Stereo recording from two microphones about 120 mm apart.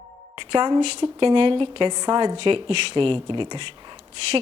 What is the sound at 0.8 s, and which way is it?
A woman's voice, 45° right (ahead or behind).